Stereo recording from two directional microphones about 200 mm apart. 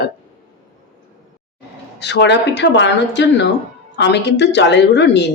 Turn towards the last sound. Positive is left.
turn(degrees=60)  # may be behind; listen again after turning